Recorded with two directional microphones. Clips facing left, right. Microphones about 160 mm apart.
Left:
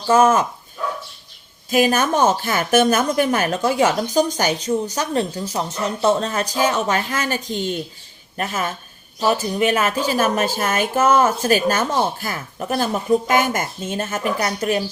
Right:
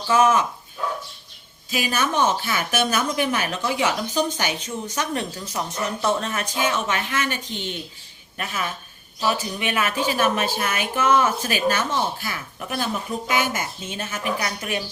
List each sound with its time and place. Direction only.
0.1 s a woman's voice: 45° left (ahead or behind)
1.7 s a woman's voice: 50° left (ahead or behind)